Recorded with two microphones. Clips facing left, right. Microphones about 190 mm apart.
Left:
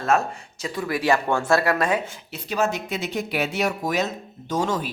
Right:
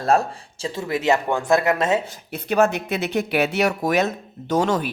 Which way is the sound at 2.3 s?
55° right (ahead or behind).